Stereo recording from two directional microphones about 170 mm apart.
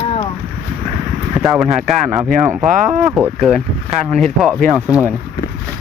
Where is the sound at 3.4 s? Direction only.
Centre (ahead or behind).